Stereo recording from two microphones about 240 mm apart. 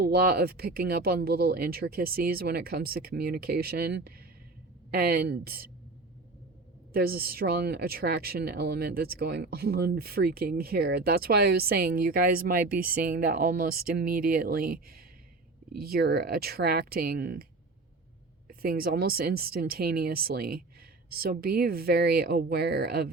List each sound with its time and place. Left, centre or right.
0.0 s speech: right
6.9 s speech: right
18.4 s speech: right